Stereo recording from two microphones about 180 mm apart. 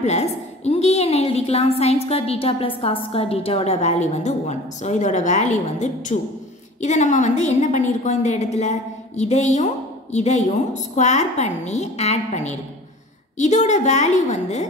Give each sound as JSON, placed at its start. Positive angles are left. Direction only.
{"t": 0.0, "sound": "a woman's voice", "side_deg": 35}